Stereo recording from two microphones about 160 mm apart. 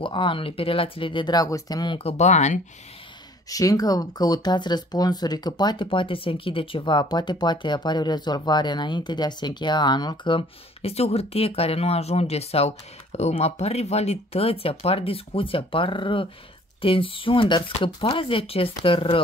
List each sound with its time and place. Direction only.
0.0 s speech: 30° left (ahead or behind)
2.0 s speech: 40° left (ahead or behind)
3.4 s speech: 20° left (ahead or behind)